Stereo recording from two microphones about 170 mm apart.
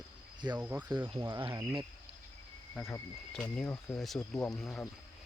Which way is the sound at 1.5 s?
15° right (ahead or behind).